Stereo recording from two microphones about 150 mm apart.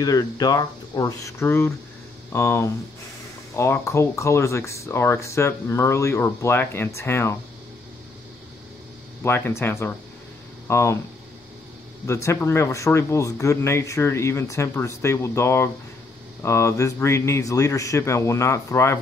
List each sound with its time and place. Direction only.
0.0 s speech: 25° left (ahead or behind)
9.2 s speech: 15° left (ahead or behind)
12.1 s speech: 20° left (ahead or behind)